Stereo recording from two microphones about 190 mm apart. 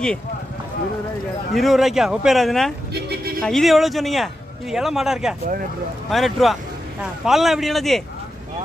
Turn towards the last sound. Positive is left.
turn(degrees=0)  # may be behind; listen again after turning